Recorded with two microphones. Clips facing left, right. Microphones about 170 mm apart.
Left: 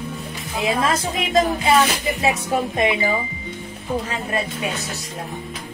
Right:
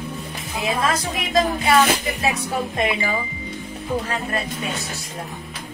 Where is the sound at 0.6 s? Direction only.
25° left (ahead or behind).